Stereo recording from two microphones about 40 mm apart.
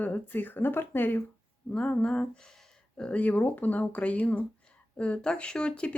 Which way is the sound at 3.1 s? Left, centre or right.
Left.